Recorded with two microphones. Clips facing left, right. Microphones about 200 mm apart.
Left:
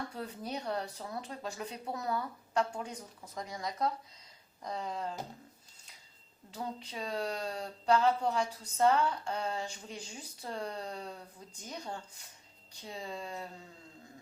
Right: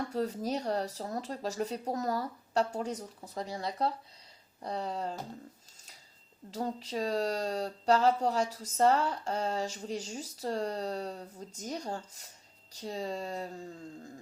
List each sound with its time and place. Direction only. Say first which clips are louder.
0.1 s speech: right 7 dB; 40° right (ahead or behind)
6.5 s speech: right 6 dB; 40° right (ahead or behind)